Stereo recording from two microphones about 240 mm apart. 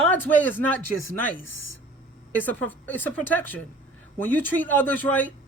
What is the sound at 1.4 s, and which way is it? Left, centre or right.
Speech, left.